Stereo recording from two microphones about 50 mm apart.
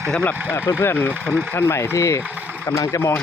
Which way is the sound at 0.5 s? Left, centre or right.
Left.